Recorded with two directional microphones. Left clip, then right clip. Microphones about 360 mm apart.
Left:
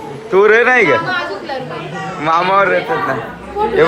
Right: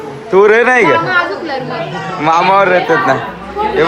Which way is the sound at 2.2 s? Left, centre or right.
Centre.